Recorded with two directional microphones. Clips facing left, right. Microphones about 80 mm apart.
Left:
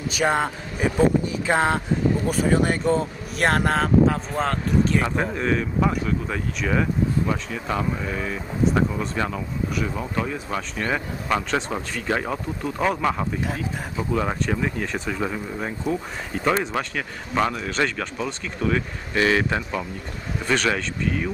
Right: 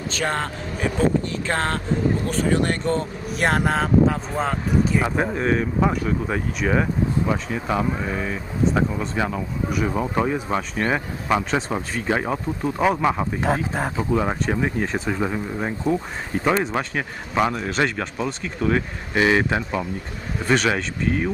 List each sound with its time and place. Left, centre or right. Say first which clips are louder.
0.1 s speech: left 4 dB; centre
9.9 s speech: right 5 dB; right
11.2 s speech: right 2 dB; centre
13.4 s speech: right 6 dB; right
14.1 s speech: right 1 dB; centre
18.4 s speech: right 2 dB; right